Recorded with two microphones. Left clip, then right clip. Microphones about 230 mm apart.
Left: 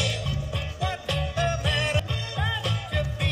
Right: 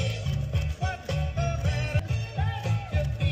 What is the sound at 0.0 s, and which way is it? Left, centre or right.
Music, left.